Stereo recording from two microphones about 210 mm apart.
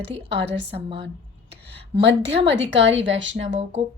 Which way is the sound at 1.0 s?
55° right (ahead or behind).